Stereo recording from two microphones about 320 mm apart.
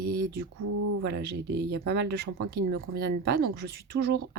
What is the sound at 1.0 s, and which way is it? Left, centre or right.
Speech, right.